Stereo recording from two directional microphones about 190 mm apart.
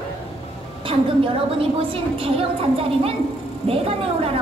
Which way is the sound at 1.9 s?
30° right (ahead or behind).